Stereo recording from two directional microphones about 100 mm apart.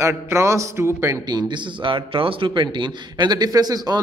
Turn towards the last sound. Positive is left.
turn(degrees=-40)  # may be behind; listen again after turning